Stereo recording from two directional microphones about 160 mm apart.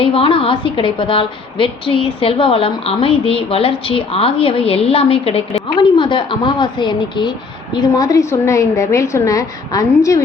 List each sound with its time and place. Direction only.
0.0 s a woman's voice: 35° left (ahead or behind); by 10.2 s 20° left (ahead or behind)